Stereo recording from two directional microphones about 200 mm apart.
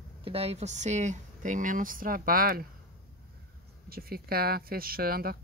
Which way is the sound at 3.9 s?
50° right (ahead or behind).